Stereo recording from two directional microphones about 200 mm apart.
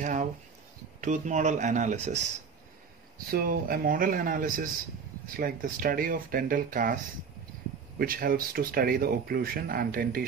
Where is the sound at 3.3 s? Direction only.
45° right (ahead or behind).